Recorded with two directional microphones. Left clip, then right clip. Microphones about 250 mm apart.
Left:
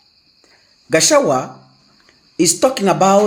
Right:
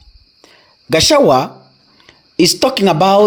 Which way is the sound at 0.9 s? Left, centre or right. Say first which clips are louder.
Right 3 dB; right.